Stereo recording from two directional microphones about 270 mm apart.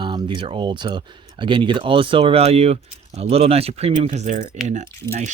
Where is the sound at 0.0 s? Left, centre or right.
Centre.